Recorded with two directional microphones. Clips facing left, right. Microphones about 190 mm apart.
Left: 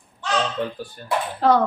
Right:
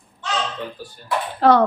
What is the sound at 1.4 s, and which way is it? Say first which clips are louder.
Speech: right 3 dB; 70° right (ahead or behind).